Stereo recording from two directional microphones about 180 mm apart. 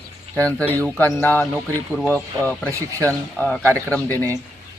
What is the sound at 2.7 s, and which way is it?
Speech, 15° right (ahead or behind).